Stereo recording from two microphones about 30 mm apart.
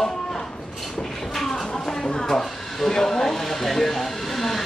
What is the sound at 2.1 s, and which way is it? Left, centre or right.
Speech, left.